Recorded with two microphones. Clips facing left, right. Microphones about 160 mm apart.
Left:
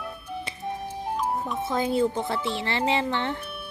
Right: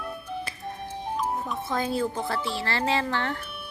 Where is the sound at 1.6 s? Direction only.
20° left (ahead or behind).